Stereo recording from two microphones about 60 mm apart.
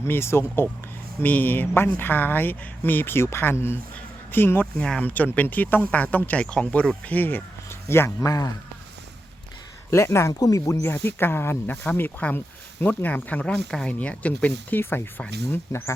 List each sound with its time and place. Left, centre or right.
0.0 s speech: left
1.2 s speech: left
4.8 s speech: centre
5.0 s speech: left
8.2 s speech: left
9.9 s speech: left
10.8 s speech: left
11.6 s speech: left
14.8 s speech: left
15.7 s speech: left